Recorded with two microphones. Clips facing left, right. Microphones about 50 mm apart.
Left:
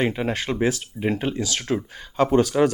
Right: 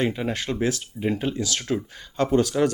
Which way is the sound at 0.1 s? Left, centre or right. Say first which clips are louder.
Left 2 dB; centre.